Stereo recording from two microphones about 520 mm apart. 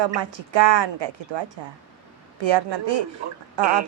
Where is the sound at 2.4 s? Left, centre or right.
Right.